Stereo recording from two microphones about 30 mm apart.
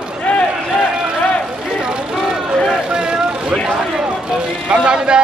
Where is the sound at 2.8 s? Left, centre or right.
Right.